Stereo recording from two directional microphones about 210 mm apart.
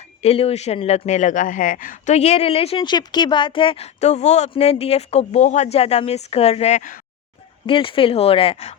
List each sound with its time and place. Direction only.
0.2 s speech: 30° left (ahead or behind)
7.7 s speech: 25° left (ahead or behind)